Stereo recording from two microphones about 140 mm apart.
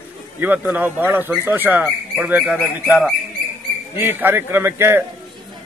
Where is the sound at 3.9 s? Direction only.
15° right (ahead or behind).